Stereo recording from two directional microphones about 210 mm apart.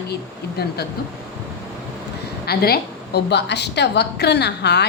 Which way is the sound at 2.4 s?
50° left (ahead or behind).